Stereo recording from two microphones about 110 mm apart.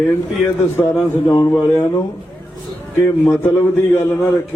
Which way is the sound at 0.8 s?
20° left (ahead or behind).